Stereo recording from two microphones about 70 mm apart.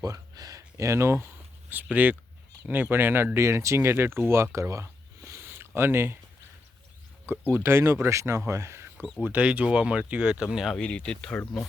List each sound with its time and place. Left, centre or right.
0.0 s speech: right
1.7 s speech: right
5.5 s a sound: right
7.5 s speech: right
9.2 s speech: centre
10.8 s speech: centre